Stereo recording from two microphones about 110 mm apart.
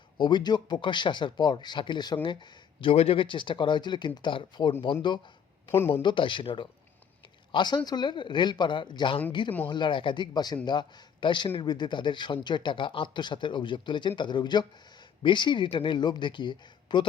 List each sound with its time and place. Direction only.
0.2 s a man's voice: 45° left (ahead or behind)
2.9 s a man's voice: 65° left (ahead or behind); by 4.7 s 50° left (ahead or behind)
5.9 s a man's voice: 50° left (ahead or behind)